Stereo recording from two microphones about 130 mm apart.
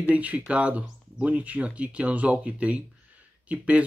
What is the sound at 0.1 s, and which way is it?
Speech, 10° right (ahead or behind).